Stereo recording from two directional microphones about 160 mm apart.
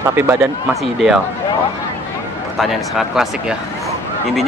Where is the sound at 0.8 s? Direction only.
Centre (ahead or behind).